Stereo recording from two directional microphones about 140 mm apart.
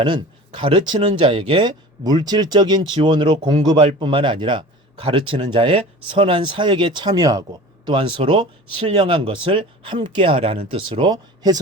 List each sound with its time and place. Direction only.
0.0 s speech: 35° right (ahead or behind)